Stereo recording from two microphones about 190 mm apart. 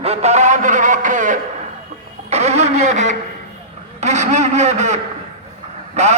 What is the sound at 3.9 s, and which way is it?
Speech, 35° right (ahead or behind).